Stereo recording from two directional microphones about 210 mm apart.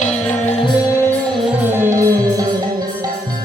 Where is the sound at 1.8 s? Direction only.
15° right (ahead or behind).